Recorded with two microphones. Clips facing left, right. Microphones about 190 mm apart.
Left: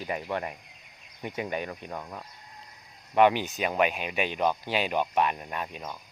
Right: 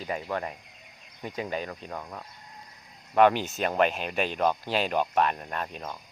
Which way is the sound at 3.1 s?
15° left (ahead or behind).